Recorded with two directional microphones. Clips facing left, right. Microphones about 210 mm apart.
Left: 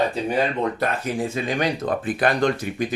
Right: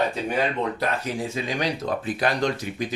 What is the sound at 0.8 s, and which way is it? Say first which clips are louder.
Speech: left 3 dB; 50° left (ahead or behind).